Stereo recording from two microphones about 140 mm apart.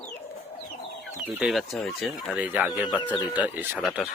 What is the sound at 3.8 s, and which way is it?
Speech, 5° right (ahead or behind).